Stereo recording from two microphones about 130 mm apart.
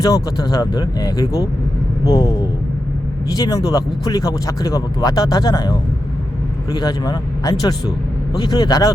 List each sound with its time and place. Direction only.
0.0 s speech: 30° left (ahead or behind)